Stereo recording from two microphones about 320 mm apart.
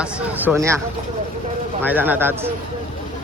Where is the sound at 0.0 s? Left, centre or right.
Centre.